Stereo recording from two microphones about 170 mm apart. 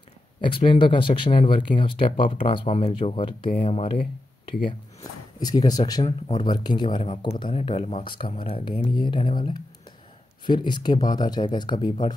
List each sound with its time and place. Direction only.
0.4 s speech: 30° left (ahead or behind)
5.4 s speech: 20° left (ahead or behind)